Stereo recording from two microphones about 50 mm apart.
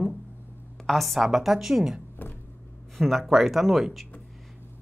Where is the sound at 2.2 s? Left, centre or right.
Left.